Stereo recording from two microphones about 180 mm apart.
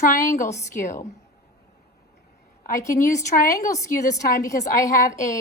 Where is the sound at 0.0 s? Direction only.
45° left (ahead or behind).